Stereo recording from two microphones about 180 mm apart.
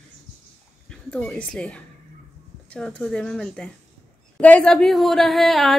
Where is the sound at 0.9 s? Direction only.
5° left (ahead or behind).